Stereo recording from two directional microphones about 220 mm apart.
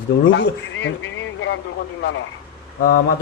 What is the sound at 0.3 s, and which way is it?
Speech, 55° left (ahead or behind).